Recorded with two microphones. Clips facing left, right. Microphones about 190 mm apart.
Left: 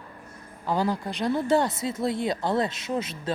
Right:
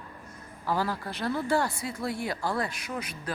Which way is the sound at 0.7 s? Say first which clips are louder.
Left 4 dB; 20° left (ahead or behind).